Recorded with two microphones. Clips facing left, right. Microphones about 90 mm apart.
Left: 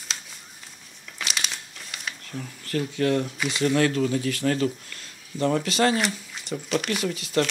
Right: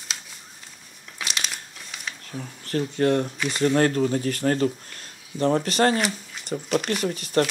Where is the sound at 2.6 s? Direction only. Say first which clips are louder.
Right 2 dB; 35° right (ahead or behind).